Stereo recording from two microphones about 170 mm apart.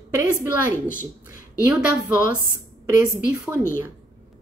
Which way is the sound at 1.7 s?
10° right (ahead or behind).